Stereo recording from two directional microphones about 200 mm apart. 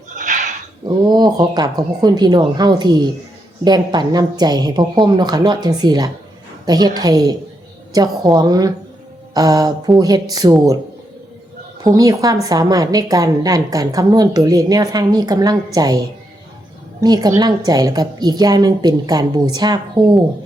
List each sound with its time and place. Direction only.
0.1 s a sound: 40° right (ahead or behind)
0.9 s a woman's voice: 20° right (ahead or behind)
11.9 s a woman's voice: 15° right (ahead or behind)